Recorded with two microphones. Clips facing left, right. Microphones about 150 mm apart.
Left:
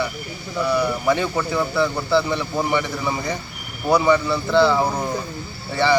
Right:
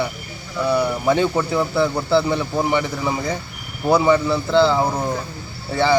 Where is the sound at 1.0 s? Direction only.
10° right (ahead or behind).